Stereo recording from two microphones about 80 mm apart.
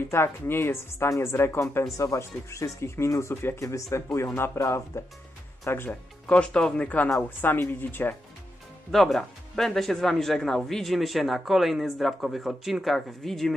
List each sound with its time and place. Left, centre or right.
0.1 s speech: left
5.9 s speech: centre
8.9 s speech: centre